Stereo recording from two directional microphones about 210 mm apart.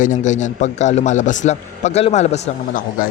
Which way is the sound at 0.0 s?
35° left (ahead or behind).